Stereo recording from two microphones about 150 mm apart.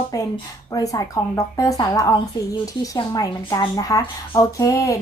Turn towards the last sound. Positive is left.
turn(degrees=20)  # may be behind; listen again after turning